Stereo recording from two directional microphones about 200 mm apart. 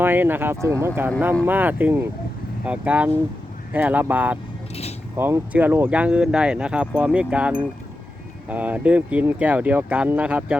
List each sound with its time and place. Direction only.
0.0 s speech: 10° right (ahead or behind)
4.7 s a sound: 30° left (ahead or behind)
5.1 s speech: 10° right (ahead or behind)